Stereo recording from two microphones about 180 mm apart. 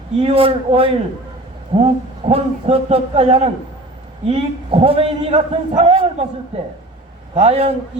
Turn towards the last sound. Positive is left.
turn(degrees=-35)  # may be behind; listen again after turning